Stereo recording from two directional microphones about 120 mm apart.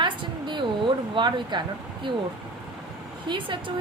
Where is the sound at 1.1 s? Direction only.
40° right (ahead or behind).